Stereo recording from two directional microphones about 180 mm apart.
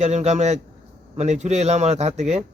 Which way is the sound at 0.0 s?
35° right (ahead or behind).